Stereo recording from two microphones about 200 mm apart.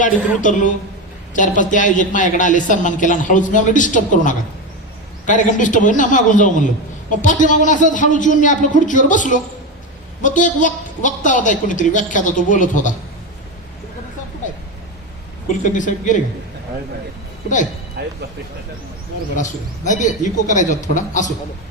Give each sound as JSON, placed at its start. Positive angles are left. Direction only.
{"t": 0.0, "sound": "speech", "side_deg": 40}
{"t": 15.6, "sound": "speech", "side_deg": 40}
{"t": 19.4, "sound": "speech", "side_deg": 40}